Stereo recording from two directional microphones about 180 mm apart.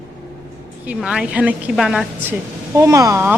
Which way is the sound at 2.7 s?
20° right (ahead or behind).